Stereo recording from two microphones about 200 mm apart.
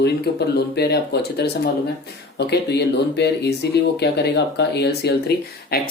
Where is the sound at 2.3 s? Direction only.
55° left (ahead or behind).